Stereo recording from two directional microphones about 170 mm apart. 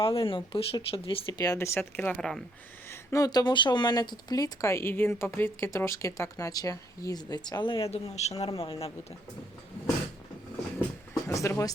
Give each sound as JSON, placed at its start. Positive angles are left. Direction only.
{"t": 0.0, "sound": "speech", "side_deg": 30}
{"t": 3.1, "sound": "speech", "side_deg": 20}
{"t": 11.1, "sound": "speech", "side_deg": 20}